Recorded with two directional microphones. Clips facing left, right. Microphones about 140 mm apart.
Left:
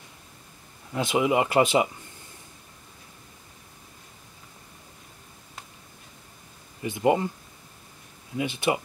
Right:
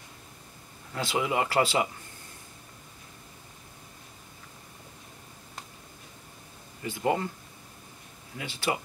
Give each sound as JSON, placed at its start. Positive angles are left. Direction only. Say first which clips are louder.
{"t": 0.9, "sound": "speech", "louder": "left 5 dB", "side_deg": 20}
{"t": 6.8, "sound": "speech", "louder": "left 5 dB", "side_deg": 20}
{"t": 8.4, "sound": "speech", "louder": "left 5 dB", "side_deg": 20}